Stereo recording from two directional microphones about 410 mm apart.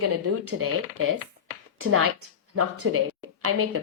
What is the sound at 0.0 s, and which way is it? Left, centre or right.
A woman's voice, right.